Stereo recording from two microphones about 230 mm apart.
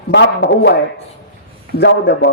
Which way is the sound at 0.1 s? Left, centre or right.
Left.